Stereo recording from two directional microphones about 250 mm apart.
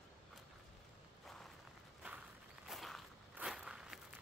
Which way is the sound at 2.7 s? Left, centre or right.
Centre.